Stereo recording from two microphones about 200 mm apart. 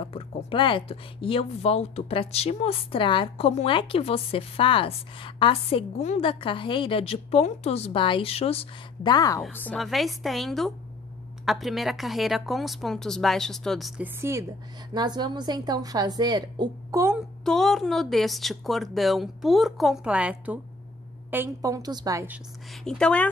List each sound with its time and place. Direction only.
0.0 s speech: 25° left (ahead or behind)
9.4 s speech: 10° left (ahead or behind); by 14.4 s 10° right (ahead or behind)
15.0 s a woman's voice: 20° right (ahead or behind)
17.5 s a woman's voice: centre (ahead or behind)
22.8 s speech: 5° left (ahead or behind)